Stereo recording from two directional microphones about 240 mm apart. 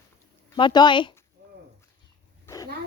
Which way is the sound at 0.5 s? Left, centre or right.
Centre.